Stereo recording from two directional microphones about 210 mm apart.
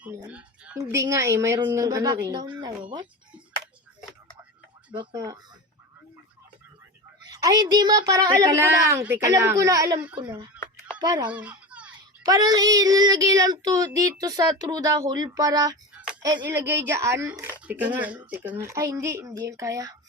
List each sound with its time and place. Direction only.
0.0 s a sound: 10° right (ahead or behind)
0.8 s child singing: 15° right (ahead or behind)
2.2 s a woman's voice: 20° right (ahead or behind)
4.9 s a woman's voice: 20° right (ahead or behind)
7.3 s child singing: 15° right (ahead or behind)
10.2 s a woman's voice: 20° right (ahead or behind)
11.3 s children playing: 5° right (ahead or behind)
12.2 s child singing: 15° right (ahead or behind)